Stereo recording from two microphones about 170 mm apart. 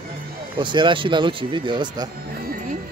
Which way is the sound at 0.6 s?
30° right (ahead or behind).